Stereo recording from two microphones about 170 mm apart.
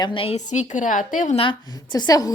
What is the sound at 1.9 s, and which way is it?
Speech, 25° left (ahead or behind).